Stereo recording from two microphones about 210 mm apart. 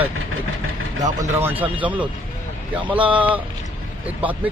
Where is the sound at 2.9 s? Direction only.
5° right (ahead or behind).